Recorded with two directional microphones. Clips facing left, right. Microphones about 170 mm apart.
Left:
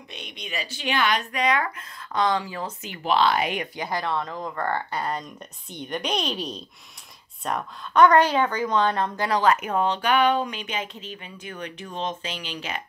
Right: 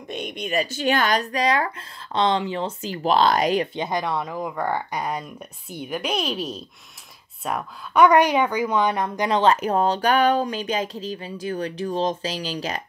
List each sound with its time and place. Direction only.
0.1 s a woman's voice: 50° right (ahead or behind)
3.7 s speech: 20° right (ahead or behind); by 12.8 s 35° right (ahead or behind)